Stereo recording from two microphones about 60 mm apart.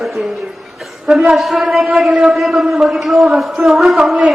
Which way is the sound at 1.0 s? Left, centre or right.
Centre.